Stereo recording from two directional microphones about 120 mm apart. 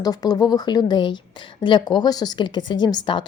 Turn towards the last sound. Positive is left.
turn(degrees=40)  # may be behind; listen again after turning